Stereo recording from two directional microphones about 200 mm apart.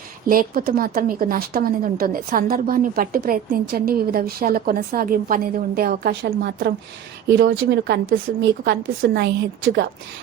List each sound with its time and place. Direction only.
0.3 s a woman's voice: 45° right (ahead or behind)